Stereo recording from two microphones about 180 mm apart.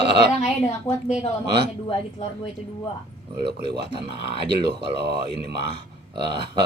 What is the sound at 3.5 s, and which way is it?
Speech, 65° right (ahead or behind).